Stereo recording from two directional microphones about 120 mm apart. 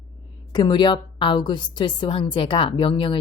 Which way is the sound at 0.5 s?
40° left (ahead or behind).